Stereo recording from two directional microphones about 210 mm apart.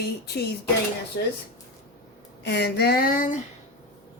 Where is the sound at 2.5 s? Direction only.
55° left (ahead or behind).